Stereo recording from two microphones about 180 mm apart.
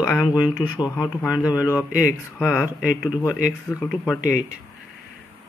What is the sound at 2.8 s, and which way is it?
Speech, 5° right (ahead or behind).